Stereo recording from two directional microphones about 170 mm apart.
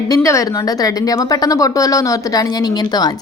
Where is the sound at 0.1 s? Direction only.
20° left (ahead or behind).